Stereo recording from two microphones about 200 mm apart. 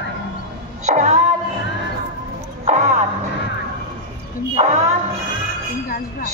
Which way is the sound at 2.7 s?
35° right (ahead or behind).